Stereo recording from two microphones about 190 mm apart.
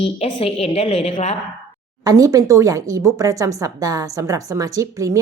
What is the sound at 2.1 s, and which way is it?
A woman's voice, 20° right (ahead or behind).